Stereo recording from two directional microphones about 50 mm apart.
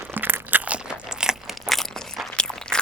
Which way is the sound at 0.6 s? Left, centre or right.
Centre.